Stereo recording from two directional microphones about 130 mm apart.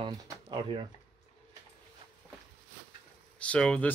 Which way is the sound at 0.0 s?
40° right (ahead or behind).